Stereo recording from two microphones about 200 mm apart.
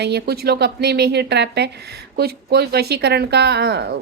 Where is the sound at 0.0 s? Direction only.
55° right (ahead or behind).